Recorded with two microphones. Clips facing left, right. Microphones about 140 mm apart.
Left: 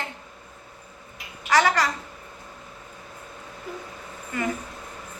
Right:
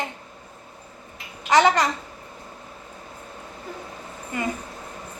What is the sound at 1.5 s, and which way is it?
Speech, 20° right (ahead or behind).